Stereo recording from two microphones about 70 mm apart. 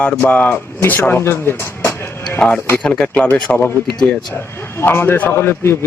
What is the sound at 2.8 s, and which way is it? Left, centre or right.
Speech, centre.